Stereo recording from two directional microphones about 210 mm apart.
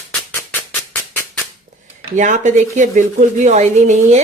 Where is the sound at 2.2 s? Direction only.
35° right (ahead or behind).